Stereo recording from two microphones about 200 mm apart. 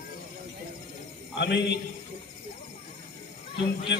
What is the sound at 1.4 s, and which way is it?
Speech, 55° left (ahead or behind).